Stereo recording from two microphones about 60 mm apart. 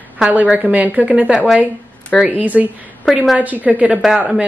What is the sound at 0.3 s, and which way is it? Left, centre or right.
A woman's voice, right.